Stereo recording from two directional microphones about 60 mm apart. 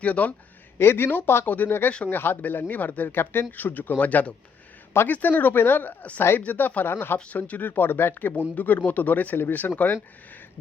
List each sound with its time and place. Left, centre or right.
0.0 s speech: left
0.8 s speech: left
7.3 s speech: left